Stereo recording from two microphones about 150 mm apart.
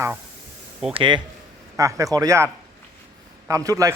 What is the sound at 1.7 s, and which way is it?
Speech, 20° right (ahead or behind).